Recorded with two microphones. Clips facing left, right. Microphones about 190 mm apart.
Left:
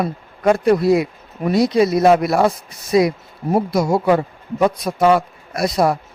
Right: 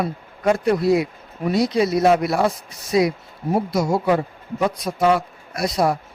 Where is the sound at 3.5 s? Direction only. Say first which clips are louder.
Left 3 dB; 55° left (ahead or behind).